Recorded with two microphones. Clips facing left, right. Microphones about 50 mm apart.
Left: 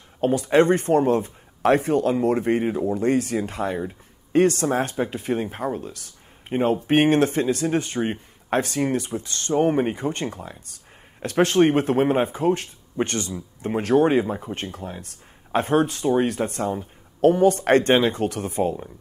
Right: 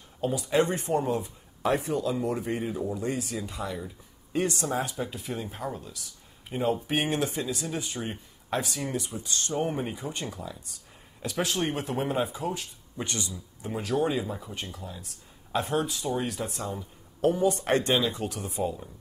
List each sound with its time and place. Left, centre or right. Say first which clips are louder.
0.2 s speech: left 7 dB; left